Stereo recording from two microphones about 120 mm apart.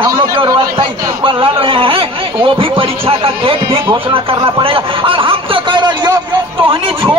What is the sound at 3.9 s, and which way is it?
Speech, 45° right (ahead or behind).